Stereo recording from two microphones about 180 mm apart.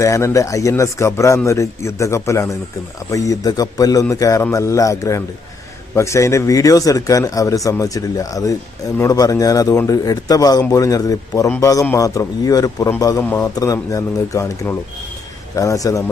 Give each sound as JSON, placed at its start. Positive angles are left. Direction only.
{"t": 0.0, "sound": "a man's voice", "side_deg": 15}